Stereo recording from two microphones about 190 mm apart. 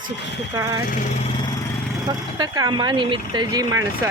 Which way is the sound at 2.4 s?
20° right (ahead or behind).